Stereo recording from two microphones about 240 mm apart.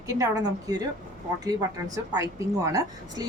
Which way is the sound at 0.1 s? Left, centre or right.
Centre.